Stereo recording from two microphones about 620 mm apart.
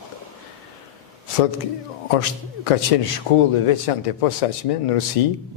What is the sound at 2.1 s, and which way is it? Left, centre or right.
A man's voice, left.